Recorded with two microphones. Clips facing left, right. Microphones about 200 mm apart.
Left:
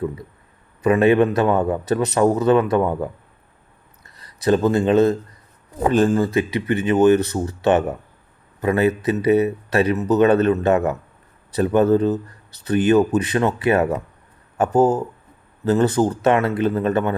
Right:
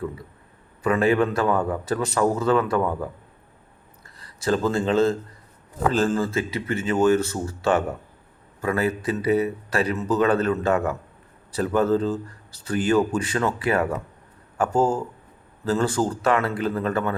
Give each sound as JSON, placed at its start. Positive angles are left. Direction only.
{"t": 0.8, "sound": "speech", "side_deg": 20}